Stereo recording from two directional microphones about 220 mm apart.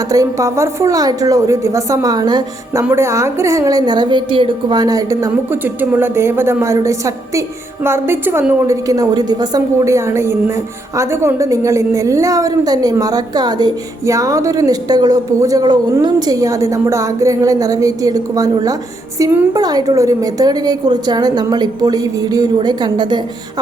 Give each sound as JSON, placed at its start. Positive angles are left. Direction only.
{"t": 0.1, "sound": "a woman's voice", "side_deg": -15}